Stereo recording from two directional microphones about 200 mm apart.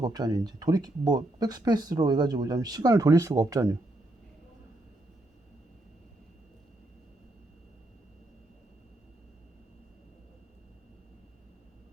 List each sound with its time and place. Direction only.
0.0 s speech: 20° right (ahead or behind)